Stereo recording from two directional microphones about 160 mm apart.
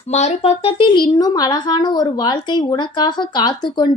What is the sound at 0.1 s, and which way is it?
Speech, 45° left (ahead or behind).